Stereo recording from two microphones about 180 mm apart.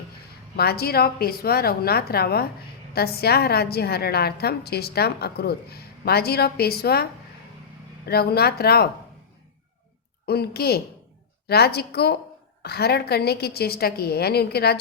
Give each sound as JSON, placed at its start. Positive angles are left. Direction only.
{"t": 0.5, "sound": "a woman's voice", "side_deg": 60}
{"t": 10.2, "sound": "a woman's voice", "side_deg": 60}